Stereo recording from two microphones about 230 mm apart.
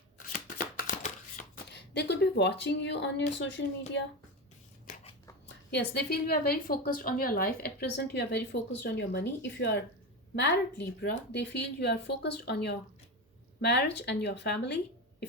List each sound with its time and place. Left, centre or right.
0.3 s shuffling cards: left
5.7 s a woman's voice: left